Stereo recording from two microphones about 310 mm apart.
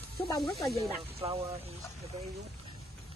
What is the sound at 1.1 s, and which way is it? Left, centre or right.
Speech, centre.